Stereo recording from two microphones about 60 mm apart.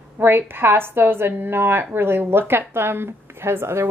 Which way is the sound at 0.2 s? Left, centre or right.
Right.